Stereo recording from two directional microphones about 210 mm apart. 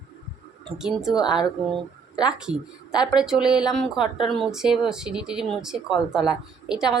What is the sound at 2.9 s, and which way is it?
Speech, 20° left (ahead or behind).